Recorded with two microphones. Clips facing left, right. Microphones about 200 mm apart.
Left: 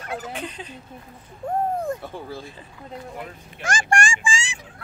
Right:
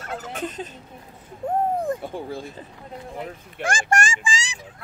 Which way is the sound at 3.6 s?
45° right (ahead or behind).